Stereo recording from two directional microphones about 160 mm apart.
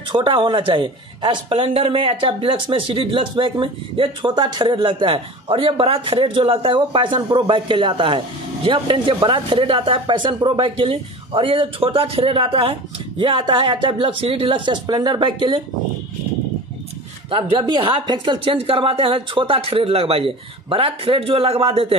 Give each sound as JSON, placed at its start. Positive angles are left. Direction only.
{"t": 0.1, "sound": "speech", "side_deg": -30}
{"t": 17.3, "sound": "speech", "side_deg": -30}